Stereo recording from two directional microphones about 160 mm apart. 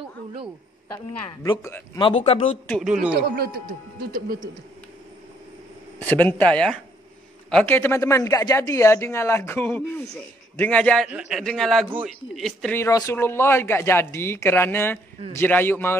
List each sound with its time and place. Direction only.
0.9 s a woman's voice: 25° left (ahead or behind)
2.1 s speech: 40° left (ahead or behind)
2.8 s a man's voice: 5° right (ahead or behind)
3.3 s speech: 80° right
5.9 s speech: 10° left (ahead or behind)
11.1 s a man's voice: 5° right (ahead or behind)
12.7 s speech: 20° left (ahead or behind)